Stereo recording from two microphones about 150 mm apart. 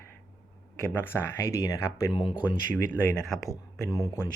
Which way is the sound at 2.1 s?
35° left (ahead or behind).